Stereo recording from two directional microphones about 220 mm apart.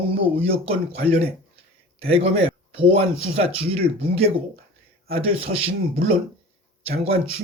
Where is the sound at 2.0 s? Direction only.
25° right (ahead or behind).